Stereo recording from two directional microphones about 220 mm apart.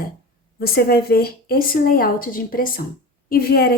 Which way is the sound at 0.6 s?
45° left (ahead or behind).